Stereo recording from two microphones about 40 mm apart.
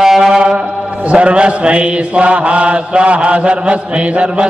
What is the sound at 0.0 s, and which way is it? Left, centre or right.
Chant, centre.